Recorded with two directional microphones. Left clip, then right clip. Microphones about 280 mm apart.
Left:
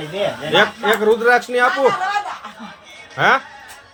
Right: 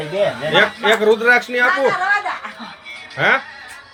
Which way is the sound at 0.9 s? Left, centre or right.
Centre.